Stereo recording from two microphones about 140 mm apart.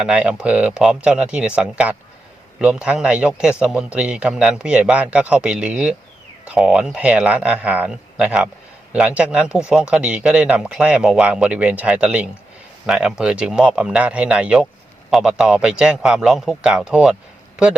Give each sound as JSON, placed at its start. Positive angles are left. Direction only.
{"t": 0.0, "sound": "a man's voice", "side_deg": -10}